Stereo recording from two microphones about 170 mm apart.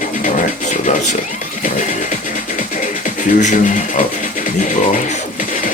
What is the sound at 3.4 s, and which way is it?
Speech, 45° left (ahead or behind).